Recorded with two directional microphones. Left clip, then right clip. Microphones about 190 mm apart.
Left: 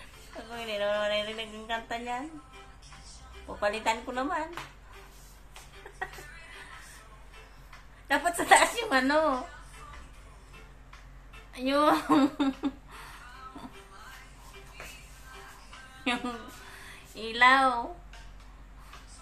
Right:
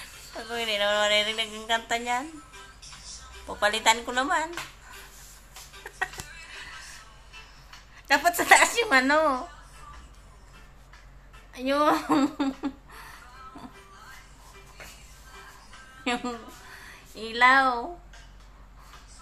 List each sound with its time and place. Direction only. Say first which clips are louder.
0.5 s a woman's voice: right 5 dB; 10° right (ahead or behind)
3.4 s a woman's voice: right 6 dB; 5° right (ahead or behind)
8.1 s a woman's voice: right 3 dB; 15° right (ahead or behind)
11.5 s speech: right 1 dB; 15° right (ahead or behind)
16.0 s a woman's voice: right 2 dB; 15° right (ahead or behind)